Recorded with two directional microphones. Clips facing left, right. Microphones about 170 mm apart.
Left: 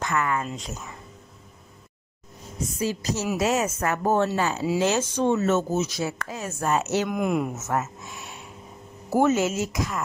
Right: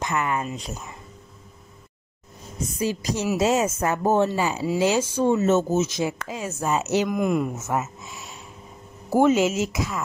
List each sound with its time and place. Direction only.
0.0 s speech: 20° right (ahead or behind)
2.8 s speech: 15° right (ahead or behind)
3.3 s speech: 25° right (ahead or behind)
5.8 s speech: 20° right (ahead or behind); by 7.5 s centre (ahead or behind)
7.5 s speech: 10° right (ahead or behind)